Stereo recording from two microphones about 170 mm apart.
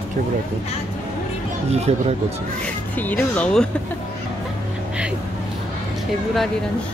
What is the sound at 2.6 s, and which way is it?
Speech, 10° left (ahead or behind).